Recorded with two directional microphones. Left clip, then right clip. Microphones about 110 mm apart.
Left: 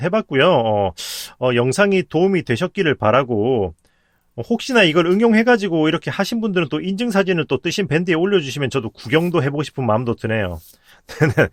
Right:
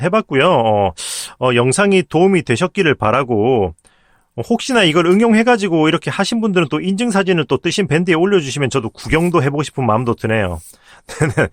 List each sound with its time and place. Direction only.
0.0 s speech: 25° right (ahead or behind)